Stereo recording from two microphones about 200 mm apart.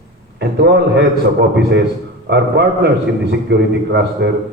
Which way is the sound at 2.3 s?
60° right (ahead or behind).